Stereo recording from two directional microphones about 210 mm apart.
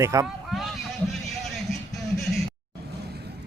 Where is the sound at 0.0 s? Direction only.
15° right (ahead or behind).